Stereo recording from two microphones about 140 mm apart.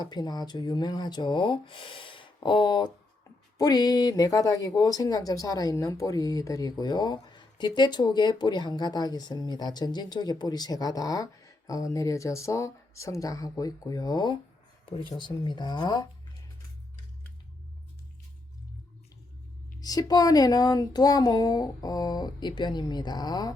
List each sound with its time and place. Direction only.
0.0 s speech: 30° left (ahead or behind)
19.8 s speech: 25° left (ahead or behind)